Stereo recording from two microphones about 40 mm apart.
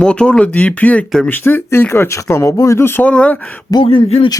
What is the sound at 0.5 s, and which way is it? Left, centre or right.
Speech, left.